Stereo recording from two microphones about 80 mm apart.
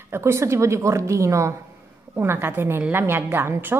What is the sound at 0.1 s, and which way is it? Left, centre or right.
Speech, right.